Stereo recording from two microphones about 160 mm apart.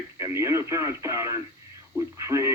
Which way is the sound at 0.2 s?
20° right (ahead or behind).